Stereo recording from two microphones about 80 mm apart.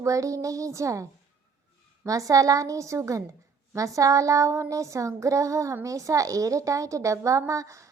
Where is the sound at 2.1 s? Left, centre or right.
Right.